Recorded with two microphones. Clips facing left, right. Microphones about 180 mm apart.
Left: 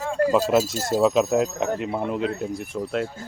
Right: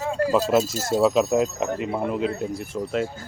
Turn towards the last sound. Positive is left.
turn(degrees=0)  # may be behind; listen again after turning